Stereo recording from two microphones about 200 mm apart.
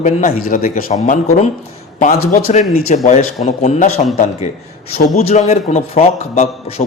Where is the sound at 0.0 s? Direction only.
35° left (ahead or behind).